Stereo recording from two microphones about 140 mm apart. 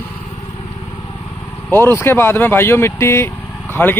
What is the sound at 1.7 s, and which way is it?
Speech, 15° left (ahead or behind).